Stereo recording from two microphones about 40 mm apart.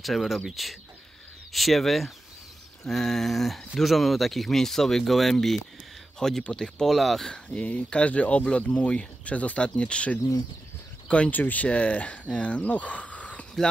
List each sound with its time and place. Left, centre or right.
0.0 s speech: centre; by 6.9 s left
6.9 s speech: centre
7.5 s speech: left
11.2 s speech: left